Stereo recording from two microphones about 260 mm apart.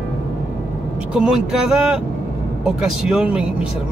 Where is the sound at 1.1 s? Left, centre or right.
Centre.